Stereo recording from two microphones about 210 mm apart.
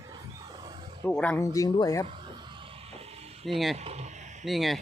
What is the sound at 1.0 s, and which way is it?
Speech, 5° left (ahead or behind).